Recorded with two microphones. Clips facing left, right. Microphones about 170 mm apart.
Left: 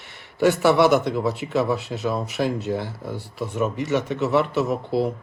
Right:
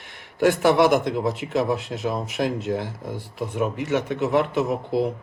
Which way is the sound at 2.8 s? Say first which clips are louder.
Even; 15° right (ahead or behind).